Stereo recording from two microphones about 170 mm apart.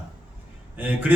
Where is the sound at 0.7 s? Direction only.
10° right (ahead or behind).